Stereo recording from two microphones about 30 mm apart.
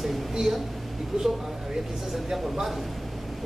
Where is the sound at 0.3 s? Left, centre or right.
Centre.